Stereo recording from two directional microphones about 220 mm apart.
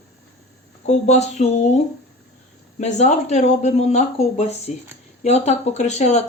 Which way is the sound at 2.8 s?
30° left (ahead or behind).